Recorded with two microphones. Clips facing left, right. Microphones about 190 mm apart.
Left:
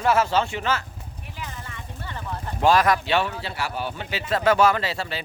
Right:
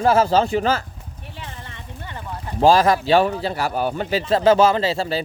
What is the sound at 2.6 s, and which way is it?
Speech, 30° right (ahead or behind).